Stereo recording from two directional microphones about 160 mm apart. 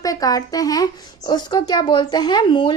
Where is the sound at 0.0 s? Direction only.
20° left (ahead or behind).